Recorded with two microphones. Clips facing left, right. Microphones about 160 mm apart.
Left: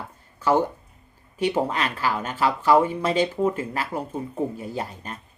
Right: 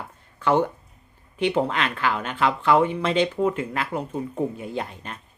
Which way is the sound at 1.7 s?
35° left (ahead or behind).